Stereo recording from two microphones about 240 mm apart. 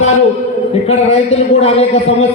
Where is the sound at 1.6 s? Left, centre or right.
Left.